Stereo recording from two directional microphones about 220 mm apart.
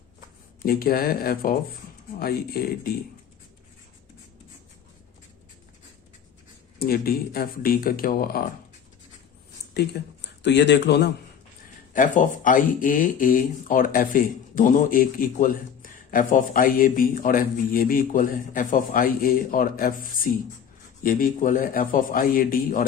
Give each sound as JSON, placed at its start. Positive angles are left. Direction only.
{"t": 0.6, "sound": "speech", "side_deg": 40}
{"t": 6.7, "sound": "speech", "side_deg": 40}
{"t": 10.0, "sound": "speech", "side_deg": 45}
{"t": 11.9, "sound": "speech", "side_deg": 35}